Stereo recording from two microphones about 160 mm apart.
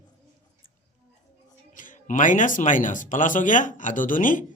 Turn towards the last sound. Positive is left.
turn(degrees=55)  # may be behind; listen again after turning